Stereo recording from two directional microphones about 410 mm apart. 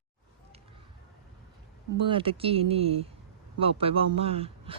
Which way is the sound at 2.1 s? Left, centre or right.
Centre.